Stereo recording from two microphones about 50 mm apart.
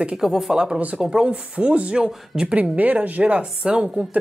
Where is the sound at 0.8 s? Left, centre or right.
Right.